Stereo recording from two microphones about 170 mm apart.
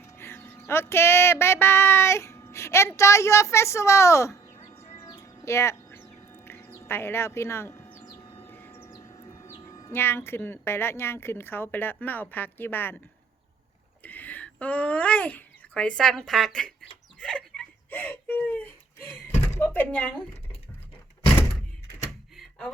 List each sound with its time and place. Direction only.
0.0 s a sound: 15° left (ahead or behind)
5.0 s bird: 20° left (ahead or behind)
8.4 s speech: 15° left (ahead or behind)
14.0 s speech: 10° left (ahead or behind)
17.2 s dog: 5° left (ahead or behind)
19.3 s speech: 10° left (ahead or behind)
21.9 s thunk: centre (ahead or behind)